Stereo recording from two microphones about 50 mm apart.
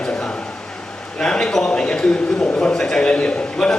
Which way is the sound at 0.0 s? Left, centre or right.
Centre.